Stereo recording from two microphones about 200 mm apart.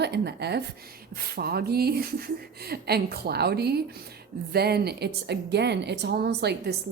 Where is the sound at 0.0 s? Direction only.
55° right (ahead or behind).